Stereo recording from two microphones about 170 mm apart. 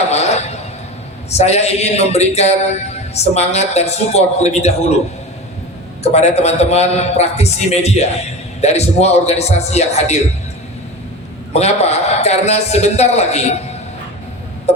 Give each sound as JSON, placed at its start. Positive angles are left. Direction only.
{"t": 0.1, "sound": "a sound", "side_deg": 40}
{"t": 1.3, "sound": "a man's voice", "side_deg": 40}
{"t": 6.0, "sound": "a man's voice", "side_deg": 40}
{"t": 11.5, "sound": "a man's voice", "side_deg": 40}